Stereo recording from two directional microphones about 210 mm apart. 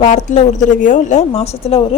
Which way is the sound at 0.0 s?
35° left (ahead or behind).